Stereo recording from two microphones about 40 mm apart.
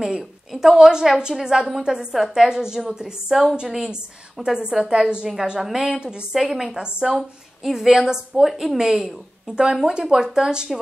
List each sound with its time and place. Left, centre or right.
0.0 s a woman's voice: centre
0.5 s a woman's voice: centre
0.7 s a woman's voice: centre
6.3 s a woman's voice: centre
8.5 s a woman's voice: centre